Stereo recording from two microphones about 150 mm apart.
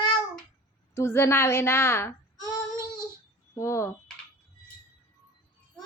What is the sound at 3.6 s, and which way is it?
Speech, 20° left (ahead or behind).